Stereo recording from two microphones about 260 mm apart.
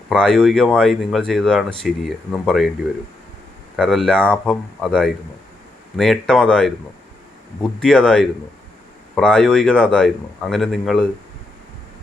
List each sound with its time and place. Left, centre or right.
0.1 s speech: centre
3.8 s speech: centre